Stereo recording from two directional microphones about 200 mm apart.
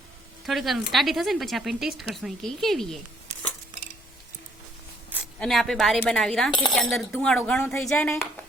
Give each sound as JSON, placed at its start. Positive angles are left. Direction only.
{"t": 0.4, "sound": "speech", "side_deg": 0}
{"t": 5.4, "sound": "speech", "side_deg": 0}
{"t": 6.5, "sound": "cutlery", "side_deg": 20}
{"t": 7.1, "sound": "speech", "side_deg": 5}